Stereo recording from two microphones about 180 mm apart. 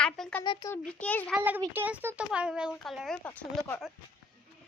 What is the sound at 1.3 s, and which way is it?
A child's voice, 10° right (ahead or behind).